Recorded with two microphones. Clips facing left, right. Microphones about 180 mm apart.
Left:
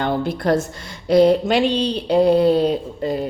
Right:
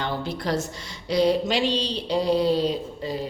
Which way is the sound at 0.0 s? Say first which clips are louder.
Left 7 dB; 55° left (ahead or behind).